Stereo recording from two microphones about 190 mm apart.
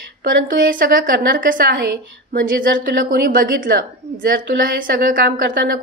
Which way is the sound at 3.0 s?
50° right (ahead or behind).